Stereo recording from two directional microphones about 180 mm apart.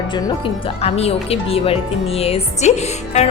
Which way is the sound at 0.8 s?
35° left (ahead or behind).